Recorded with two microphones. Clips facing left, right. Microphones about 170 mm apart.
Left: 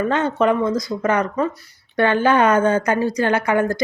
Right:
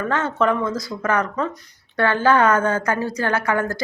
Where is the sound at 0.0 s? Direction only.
20° left (ahead or behind).